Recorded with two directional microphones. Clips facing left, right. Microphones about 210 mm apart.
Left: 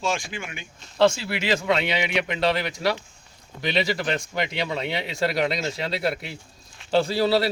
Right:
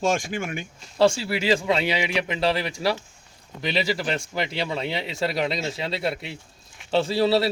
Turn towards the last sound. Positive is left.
turn(degrees=0)  # may be behind; listen again after turning